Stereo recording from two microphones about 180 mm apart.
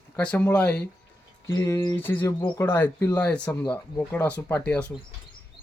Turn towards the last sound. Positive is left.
turn(degrees=10)  # may be behind; listen again after turning